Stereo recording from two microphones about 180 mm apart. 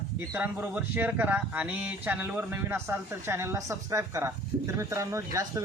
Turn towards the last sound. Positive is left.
turn(degrees=-15)  # may be behind; listen again after turning